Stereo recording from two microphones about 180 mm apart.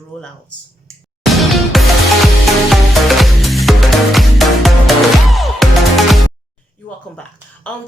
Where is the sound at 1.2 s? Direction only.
Centre (ahead or behind).